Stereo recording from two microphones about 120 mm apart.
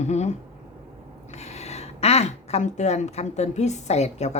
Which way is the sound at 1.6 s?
65° left (ahead or behind).